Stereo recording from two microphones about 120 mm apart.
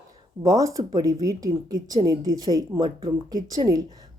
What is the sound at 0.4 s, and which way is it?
A woman's voice, 30° right (ahead or behind).